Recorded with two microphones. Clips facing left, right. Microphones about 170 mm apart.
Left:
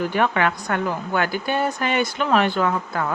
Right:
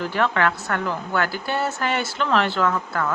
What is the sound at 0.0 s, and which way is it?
Speech, 15° left (ahead or behind).